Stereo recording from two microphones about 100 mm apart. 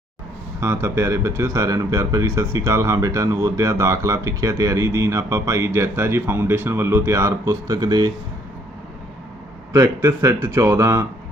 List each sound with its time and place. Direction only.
0.6 s speech: 25° right (ahead or behind)
9.7 s speech: 30° right (ahead or behind)